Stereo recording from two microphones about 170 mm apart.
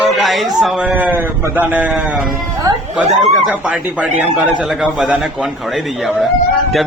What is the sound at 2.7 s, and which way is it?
Speech, 20° right (ahead or behind).